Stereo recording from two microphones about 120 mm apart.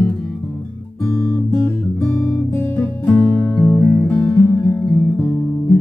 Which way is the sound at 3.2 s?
10° left (ahead or behind).